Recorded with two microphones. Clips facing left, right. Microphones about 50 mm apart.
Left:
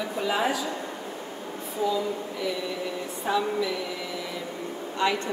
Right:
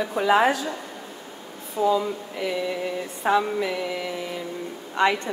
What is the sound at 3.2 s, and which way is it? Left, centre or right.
Speech, right.